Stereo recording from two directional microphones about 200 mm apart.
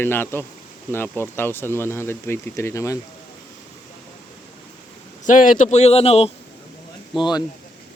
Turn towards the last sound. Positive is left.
turn(degrees=20)  # may be behind; listen again after turning